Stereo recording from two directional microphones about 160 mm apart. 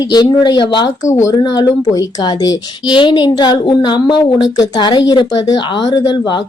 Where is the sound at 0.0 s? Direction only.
25° left (ahead or behind).